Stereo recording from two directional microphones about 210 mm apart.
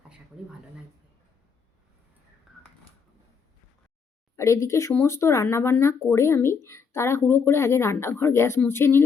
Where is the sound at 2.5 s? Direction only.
Centre (ahead or behind).